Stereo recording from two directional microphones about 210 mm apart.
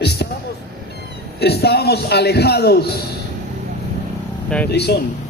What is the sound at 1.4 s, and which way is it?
A man's voice, 50° left (ahead or behind).